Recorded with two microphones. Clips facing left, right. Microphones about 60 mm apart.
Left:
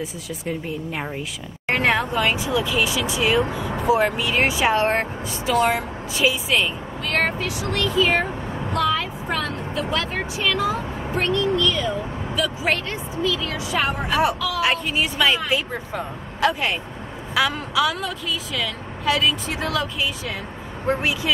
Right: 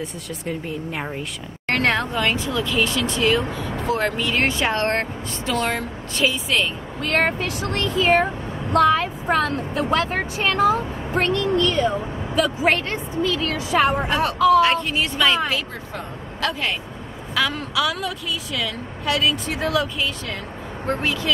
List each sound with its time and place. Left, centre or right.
0.0 s a woman's voice: centre
7.0 s a woman's voice: right
13.2 s a woman's voice: right
14.6 s a woman's voice: centre
20.8 s speech: centre